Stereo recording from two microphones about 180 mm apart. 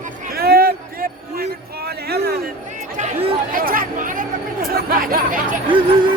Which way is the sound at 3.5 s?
50° right (ahead or behind).